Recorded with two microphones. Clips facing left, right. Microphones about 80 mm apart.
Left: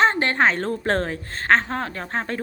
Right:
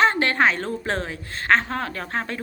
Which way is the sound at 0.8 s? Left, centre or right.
Left.